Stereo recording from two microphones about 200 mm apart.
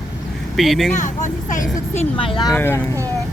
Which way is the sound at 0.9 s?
40° left (ahead or behind).